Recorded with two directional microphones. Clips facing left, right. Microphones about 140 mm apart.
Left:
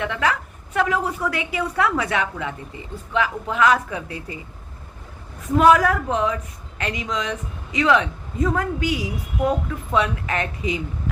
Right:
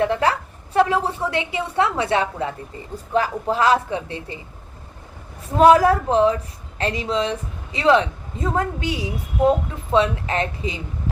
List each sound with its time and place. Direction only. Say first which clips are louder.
0.0 s a woman's voice: right 4 dB; 35° right (ahead or behind)
5.5 s a woman's voice: right 3 dB; 30° right (ahead or behind)